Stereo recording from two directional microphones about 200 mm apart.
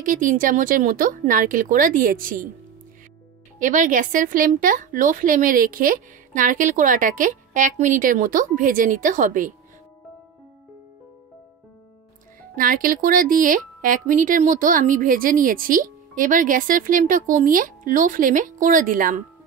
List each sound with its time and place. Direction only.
0.0 s a woman's voice: 40° right (ahead or behind)
3.5 s a woman's voice: 40° right (ahead or behind)
12.5 s a woman's voice: 45° right (ahead or behind)